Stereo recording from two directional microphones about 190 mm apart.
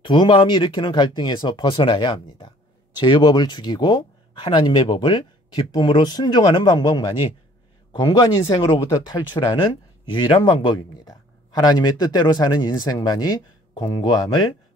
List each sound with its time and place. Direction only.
0.0 s speech: 25° left (ahead or behind)